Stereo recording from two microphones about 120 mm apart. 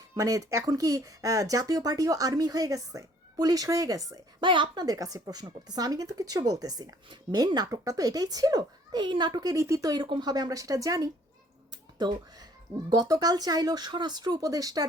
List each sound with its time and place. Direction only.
0.2 s speech: 30° right (ahead or behind)
4.4 s a woman's voice: 40° right (ahead or behind)